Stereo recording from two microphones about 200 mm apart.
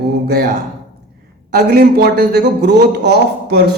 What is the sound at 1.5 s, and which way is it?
A man's voice, 50° right (ahead or behind).